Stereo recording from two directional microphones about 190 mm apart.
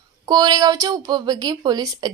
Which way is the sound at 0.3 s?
20° right (ahead or behind).